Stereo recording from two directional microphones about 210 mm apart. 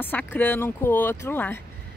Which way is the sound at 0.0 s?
10° left (ahead or behind).